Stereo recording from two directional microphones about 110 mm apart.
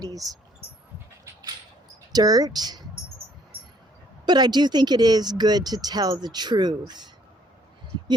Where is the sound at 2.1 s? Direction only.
35° right (ahead or behind).